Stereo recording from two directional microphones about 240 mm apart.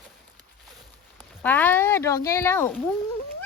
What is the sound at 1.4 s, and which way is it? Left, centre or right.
Speech, centre.